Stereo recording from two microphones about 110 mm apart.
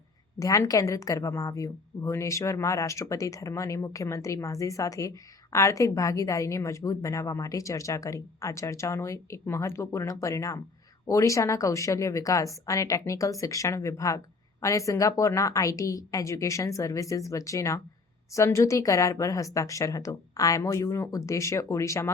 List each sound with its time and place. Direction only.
0.3 s a woman's voice: 30° left (ahead or behind)